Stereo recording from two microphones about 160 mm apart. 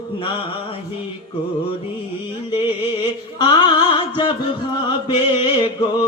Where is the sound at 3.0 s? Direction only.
25° left (ahead or behind).